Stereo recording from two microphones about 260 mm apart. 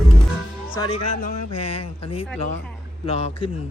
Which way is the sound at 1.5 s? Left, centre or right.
Left.